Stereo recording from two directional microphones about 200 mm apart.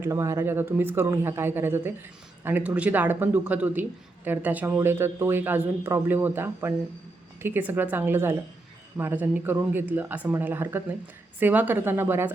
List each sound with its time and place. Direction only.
0.0 s a man's voice: 15° right (ahead or behind)